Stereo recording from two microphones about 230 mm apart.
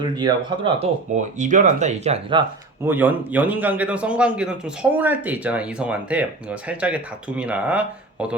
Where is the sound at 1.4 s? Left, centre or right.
Right.